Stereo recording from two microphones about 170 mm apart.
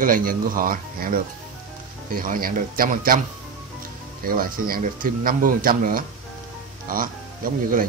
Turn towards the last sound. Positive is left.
turn(degrees=-55)  # may be behind; listen again after turning